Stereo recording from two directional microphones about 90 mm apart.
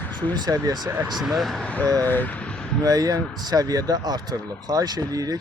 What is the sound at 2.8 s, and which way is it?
Speech, 45° right (ahead or behind).